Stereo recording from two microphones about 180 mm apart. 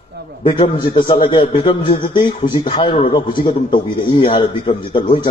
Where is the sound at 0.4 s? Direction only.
30° left (ahead or behind).